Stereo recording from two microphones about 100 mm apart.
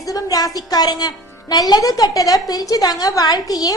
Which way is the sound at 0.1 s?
35° left (ahead or behind).